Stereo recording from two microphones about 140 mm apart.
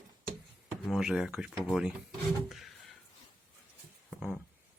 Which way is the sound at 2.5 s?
Centre (ahead or behind).